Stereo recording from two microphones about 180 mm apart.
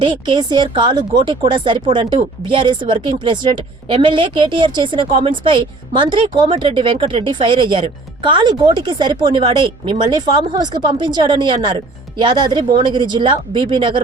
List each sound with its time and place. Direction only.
0.0 s speech: 25° right (ahead or behind)